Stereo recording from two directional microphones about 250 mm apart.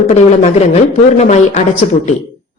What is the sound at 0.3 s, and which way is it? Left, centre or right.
A woman's voice, left.